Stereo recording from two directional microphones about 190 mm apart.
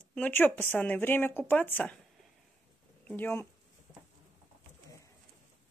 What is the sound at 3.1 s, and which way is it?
Speech, 10° left (ahead or behind).